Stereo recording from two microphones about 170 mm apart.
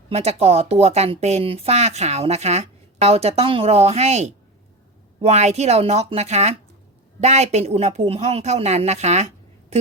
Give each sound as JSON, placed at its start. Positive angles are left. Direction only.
{"t": 0.1, "sound": "speech", "side_deg": -40}